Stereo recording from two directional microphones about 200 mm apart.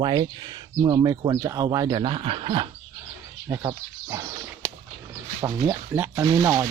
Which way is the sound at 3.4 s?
15° right (ahead or behind).